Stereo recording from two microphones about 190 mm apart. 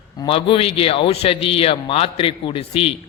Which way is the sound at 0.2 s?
25° left (ahead or behind).